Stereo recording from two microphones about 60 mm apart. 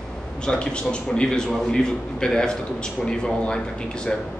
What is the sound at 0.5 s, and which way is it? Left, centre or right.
A man's voice, centre.